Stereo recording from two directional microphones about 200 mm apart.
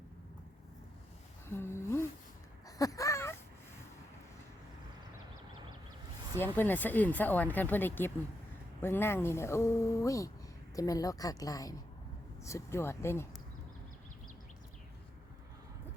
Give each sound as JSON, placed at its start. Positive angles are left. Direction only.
{"t": 1.5, "sound": "humming", "side_deg": 10}
{"t": 2.6, "sound": "a sound", "side_deg": 15}
{"t": 6.3, "sound": "speech", "side_deg": 10}